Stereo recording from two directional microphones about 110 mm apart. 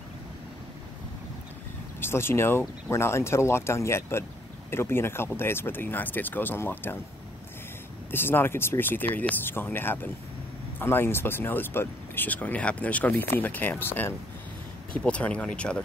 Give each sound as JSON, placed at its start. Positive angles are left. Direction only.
{"t": 2.0, "sound": "speech", "side_deg": 20}
{"t": 8.1, "sound": "speech", "side_deg": 20}